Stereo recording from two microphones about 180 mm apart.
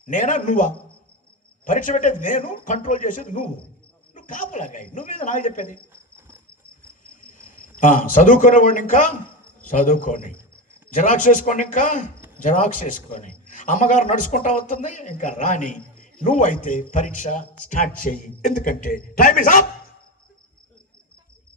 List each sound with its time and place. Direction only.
0.1 s a man's voice: 45° left (ahead or behind)
7.3 s a man's voice: 50° left (ahead or behind)